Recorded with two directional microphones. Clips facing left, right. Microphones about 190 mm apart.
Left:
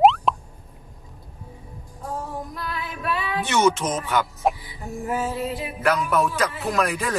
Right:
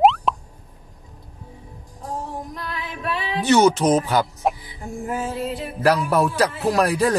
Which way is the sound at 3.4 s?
35° right (ahead or behind).